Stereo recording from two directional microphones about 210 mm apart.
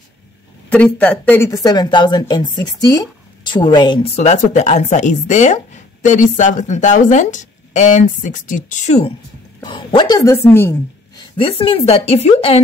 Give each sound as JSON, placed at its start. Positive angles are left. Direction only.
{"t": 0.7, "sound": "speech", "side_deg": 5}
{"t": 9.6, "sound": "a woman's voice", "side_deg": 20}